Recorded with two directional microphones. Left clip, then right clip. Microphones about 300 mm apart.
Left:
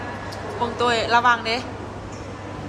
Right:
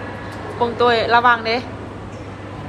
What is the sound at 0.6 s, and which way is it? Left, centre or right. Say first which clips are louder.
Speech: right 5 dB; centre.